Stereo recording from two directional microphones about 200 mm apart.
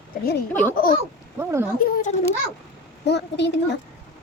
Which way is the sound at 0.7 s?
45° left (ahead or behind).